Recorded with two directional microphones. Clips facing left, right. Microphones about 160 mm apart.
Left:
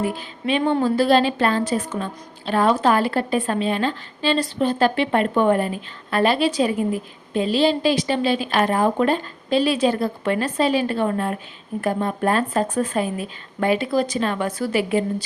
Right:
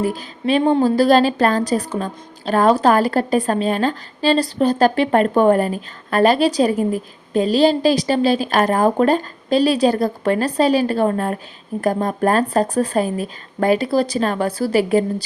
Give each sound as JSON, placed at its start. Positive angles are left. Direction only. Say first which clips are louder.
{"t": 0.0, "sound": "a woman's voice", "louder": "right 3 dB", "side_deg": -40}